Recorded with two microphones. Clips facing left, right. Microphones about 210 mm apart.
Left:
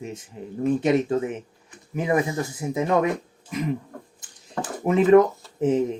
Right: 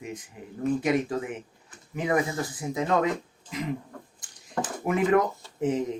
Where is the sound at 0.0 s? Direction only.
25° left (ahead or behind).